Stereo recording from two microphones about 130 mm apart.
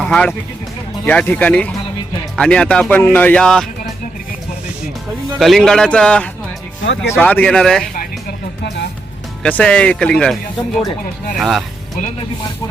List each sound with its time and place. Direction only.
0.0 s speech: 5° left (ahead or behind)
5.4 s a man's voice: centre (ahead or behind)
9.4 s speech: 10° left (ahead or behind)
11.3 s a man's voice: centre (ahead or behind)